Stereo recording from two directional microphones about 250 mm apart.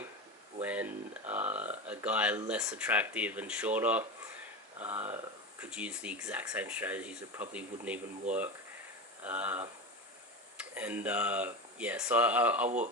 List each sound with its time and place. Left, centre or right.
0.6 s speech: centre
12.6 s speech: right